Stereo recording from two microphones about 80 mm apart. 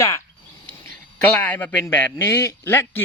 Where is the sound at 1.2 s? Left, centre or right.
Centre.